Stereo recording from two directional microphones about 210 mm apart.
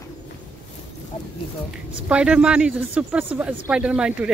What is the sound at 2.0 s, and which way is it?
Speech, 5° right (ahead or behind).